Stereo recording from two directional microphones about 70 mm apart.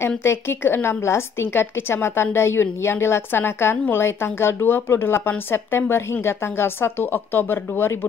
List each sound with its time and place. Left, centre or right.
0.2 s a woman's voice: left